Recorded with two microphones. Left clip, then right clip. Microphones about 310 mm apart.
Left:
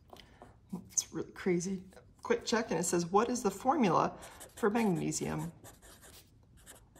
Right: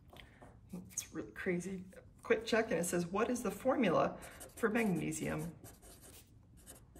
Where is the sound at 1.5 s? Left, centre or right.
Left.